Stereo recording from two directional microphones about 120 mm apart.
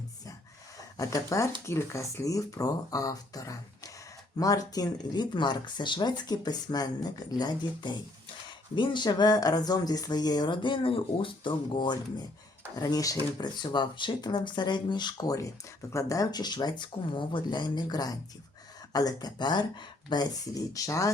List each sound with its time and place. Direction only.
0.9 s speech: 25° left (ahead or behind); by 11.9 s 40° left (ahead or behind)
12.7 s speech: 30° left (ahead or behind)